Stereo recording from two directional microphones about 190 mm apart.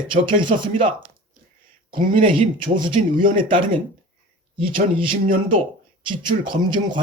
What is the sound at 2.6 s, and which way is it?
Speech, 25° right (ahead or behind).